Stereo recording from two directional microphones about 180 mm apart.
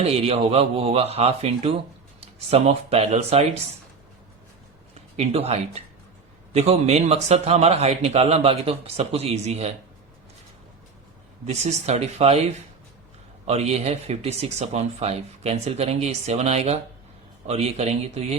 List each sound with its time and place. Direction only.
0.0 s speech: 35° right (ahead or behind)
5.1 s speech: 35° right (ahead or behind)
11.4 s speech: 40° right (ahead or behind)